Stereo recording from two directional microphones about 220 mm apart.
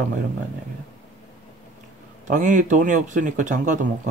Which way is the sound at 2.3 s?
35° right (ahead or behind).